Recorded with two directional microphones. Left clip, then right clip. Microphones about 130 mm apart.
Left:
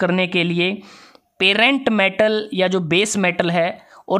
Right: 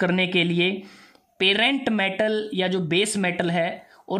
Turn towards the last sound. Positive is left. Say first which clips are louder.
# left 6 dB
turn(degrees=35)  # may be behind; listen again after turning